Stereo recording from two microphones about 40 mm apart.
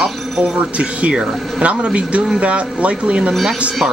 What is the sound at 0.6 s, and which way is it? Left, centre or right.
A man's voice, right.